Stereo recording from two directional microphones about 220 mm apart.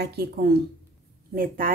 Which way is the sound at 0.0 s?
45° right (ahead or behind).